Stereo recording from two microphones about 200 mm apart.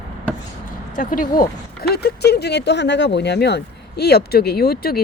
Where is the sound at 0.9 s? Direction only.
45° left (ahead or behind).